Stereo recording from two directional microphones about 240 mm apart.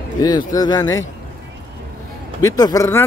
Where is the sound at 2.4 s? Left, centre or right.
Centre.